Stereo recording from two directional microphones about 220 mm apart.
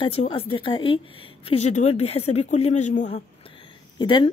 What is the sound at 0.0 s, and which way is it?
A woman's voice, 25° left (ahead or behind).